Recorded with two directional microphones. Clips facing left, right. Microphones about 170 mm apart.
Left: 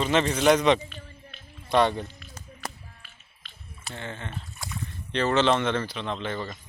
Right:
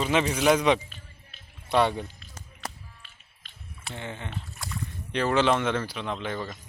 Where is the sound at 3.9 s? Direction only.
15° right (ahead or behind).